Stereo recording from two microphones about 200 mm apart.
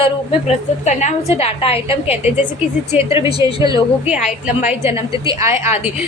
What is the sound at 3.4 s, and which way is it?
Speech, 20° right (ahead or behind).